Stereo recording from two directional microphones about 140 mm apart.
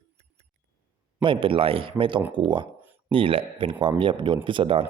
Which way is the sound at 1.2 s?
35° right (ahead or behind).